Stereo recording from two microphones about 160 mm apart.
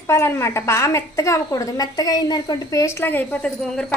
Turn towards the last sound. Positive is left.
turn(degrees=5)  # may be behind; listen again after turning